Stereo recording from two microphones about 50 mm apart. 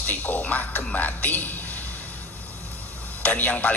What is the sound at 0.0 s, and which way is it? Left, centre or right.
A woman's voice, left.